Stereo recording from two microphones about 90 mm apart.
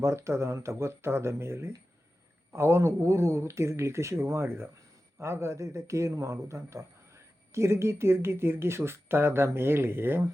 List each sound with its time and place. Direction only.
0.0 s speech: 30° right (ahead or behind)